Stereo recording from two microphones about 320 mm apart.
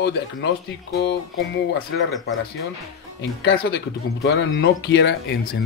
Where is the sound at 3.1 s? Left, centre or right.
Left.